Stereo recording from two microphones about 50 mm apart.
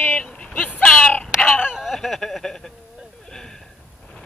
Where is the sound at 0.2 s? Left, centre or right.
Left.